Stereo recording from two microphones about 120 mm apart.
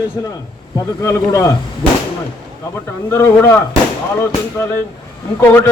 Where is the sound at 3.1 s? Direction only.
25° left (ahead or behind).